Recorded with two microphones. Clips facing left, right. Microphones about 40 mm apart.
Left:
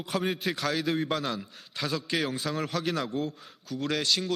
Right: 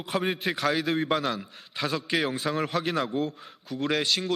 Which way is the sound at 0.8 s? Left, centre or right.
Centre.